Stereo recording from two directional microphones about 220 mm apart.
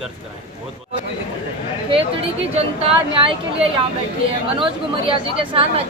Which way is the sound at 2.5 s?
25° right (ahead or behind).